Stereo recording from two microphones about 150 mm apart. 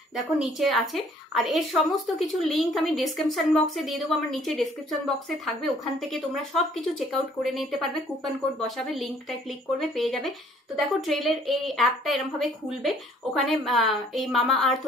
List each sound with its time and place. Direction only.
0.1 s a woman's voice: centre (ahead or behind)